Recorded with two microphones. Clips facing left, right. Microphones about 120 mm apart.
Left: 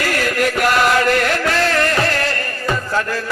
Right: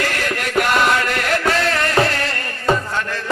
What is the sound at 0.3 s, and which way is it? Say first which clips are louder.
Chant: left 6 dB; 45° left (ahead or behind).